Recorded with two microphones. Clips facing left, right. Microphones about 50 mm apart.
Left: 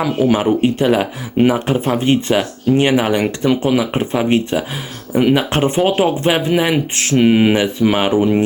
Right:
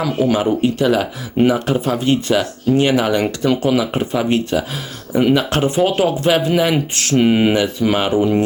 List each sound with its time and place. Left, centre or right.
0.0 s speech: centre
0.4 s speech: left
6.5 s speech: centre
6.9 s speech: left
7.2 s speech: centre
7.5 s speech: centre